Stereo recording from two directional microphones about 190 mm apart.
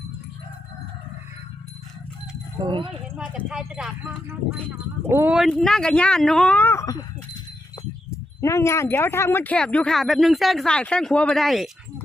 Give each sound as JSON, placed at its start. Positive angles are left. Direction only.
{"t": 2.6, "sound": "speech", "side_deg": -25}
{"t": 3.2, "sound": "speech", "side_deg": -5}
{"t": 8.1, "sound": "speech", "side_deg": 15}